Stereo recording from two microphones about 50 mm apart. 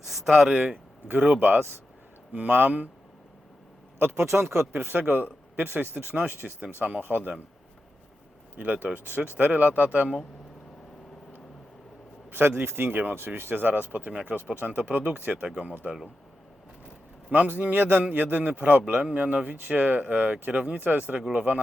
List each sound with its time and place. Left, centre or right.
0.1 s speech: centre
1.3 s speech: right
4.1 s speech: right
4.7 s speech: right
8.5 s speech: right
12.3 s a man's voice: right
12.9 s speech: right
14.1 s speech: right
15.3 s speech: centre
17.3 s speech: right
21.2 s speech: centre